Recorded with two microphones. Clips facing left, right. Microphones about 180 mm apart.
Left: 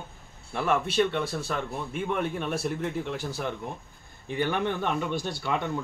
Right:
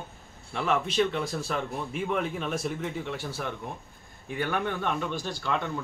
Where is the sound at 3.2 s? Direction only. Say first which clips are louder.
Left 2 dB; 15° left (ahead or behind).